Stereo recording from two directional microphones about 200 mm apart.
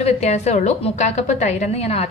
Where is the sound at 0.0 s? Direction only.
35° left (ahead or behind).